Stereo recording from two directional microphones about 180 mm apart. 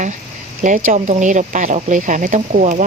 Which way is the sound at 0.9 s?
45° right (ahead or behind).